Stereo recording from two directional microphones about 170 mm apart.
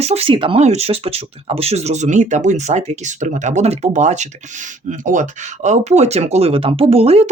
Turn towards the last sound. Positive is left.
turn(degrees=-35)  # may be behind; listen again after turning